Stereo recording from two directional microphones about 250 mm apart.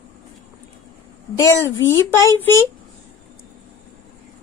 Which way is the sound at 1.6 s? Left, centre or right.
Centre.